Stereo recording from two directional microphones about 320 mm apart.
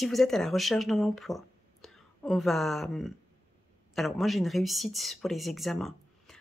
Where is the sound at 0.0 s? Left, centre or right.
Centre.